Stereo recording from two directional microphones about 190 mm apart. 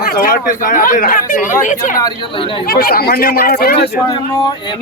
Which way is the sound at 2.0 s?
25° left (ahead or behind).